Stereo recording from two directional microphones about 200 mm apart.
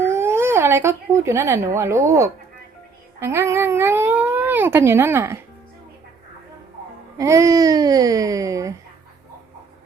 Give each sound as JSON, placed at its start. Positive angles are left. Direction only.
{"t": 0.0, "sound": "speech", "side_deg": -10}
{"t": 7.2, "sound": "speech", "side_deg": -15}